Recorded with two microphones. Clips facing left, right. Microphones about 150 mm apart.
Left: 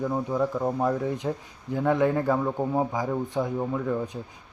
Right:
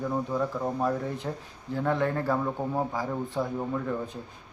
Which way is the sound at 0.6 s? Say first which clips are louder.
Left 3 dB; 15° left (ahead or behind).